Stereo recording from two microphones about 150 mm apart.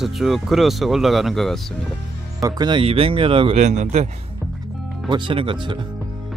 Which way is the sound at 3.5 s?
50° right (ahead or behind).